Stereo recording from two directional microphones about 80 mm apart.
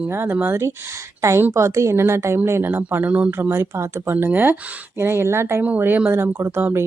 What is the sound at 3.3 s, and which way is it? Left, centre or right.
Speech, right.